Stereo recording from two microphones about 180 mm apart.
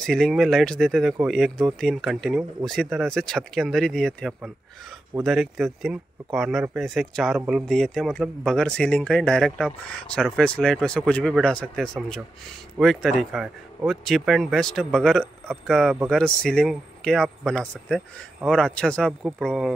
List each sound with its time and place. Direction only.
0.0 s speech: centre (ahead or behind)